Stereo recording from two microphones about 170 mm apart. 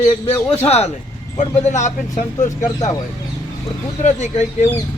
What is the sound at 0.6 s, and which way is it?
Speech, 40° left (ahead or behind).